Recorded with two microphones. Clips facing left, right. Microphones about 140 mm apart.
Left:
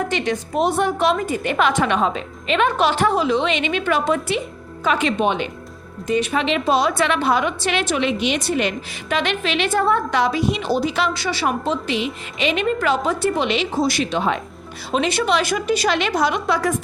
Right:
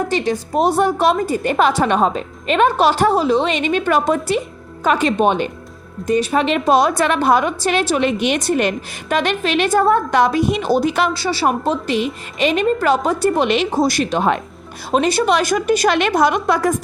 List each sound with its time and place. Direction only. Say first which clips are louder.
0.1 s a woman's voice: right 3 dB; 35° right (ahead or behind)
11.1 s a woman's voice: right 4 dB; 35° right (ahead or behind)